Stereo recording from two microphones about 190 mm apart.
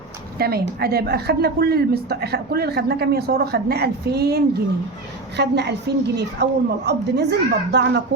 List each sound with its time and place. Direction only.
0.3 s a woman's voice: 55° right (ahead or behind)